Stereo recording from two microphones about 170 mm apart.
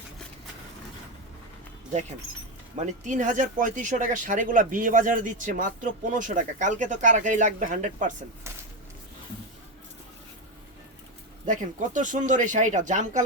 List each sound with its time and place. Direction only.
2.8 s speech: 45° right (ahead or behind)
11.4 s speech: 50° right (ahead or behind)